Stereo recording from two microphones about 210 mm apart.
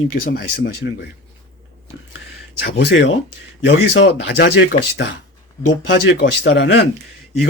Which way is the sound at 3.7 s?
60° left (ahead or behind).